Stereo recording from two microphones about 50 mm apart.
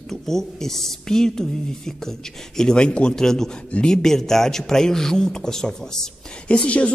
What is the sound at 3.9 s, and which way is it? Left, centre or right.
A man's voice, centre.